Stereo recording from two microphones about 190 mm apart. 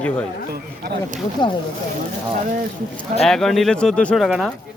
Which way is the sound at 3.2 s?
Centre (ahead or behind).